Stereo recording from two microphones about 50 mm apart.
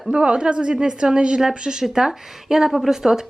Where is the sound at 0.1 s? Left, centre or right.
Centre.